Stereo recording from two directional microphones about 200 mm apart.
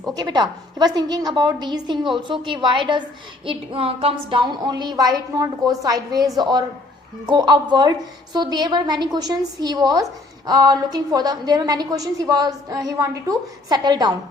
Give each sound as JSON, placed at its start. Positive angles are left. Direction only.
{"t": 0.0, "sound": "a woman's voice", "side_deg": -20}